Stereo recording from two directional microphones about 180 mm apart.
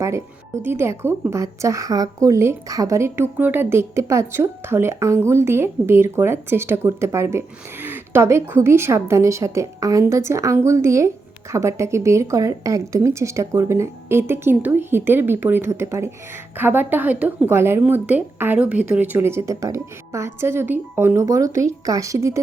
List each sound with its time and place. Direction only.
0.6 s a woman's voice: 15° right (ahead or behind)